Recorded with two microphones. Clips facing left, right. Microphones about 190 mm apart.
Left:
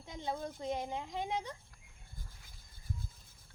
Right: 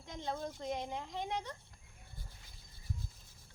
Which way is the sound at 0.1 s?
10° left (ahead or behind).